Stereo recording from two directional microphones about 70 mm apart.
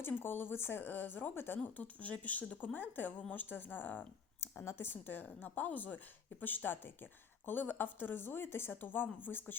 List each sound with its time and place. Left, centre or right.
0.0 s speech: left